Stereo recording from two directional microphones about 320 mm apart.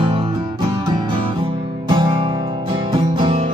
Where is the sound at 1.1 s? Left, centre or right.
Centre.